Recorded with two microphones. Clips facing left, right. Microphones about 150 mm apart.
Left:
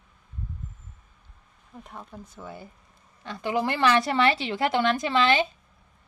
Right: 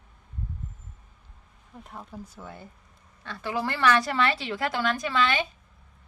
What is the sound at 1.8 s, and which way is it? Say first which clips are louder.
Speech: right 2 dB; centre (ahead or behind).